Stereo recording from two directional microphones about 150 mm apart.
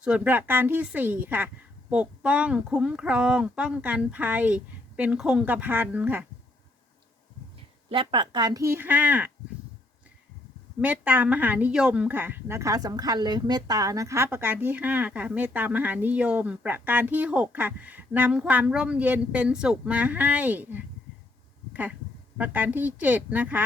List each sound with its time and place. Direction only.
0.0 s speech: 10° right (ahead or behind)
7.9 s speech: 35° right (ahead or behind); by 9.3 s 10° right (ahead or behind)
10.8 s speech: 10° right (ahead or behind)
21.7 s a sound: 10° right (ahead or behind)
22.4 s speech: 10° right (ahead or behind)